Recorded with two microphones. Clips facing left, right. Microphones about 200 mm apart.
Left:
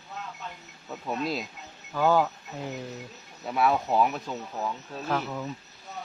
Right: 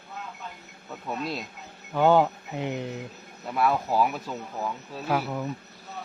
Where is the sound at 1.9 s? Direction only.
25° right (ahead or behind).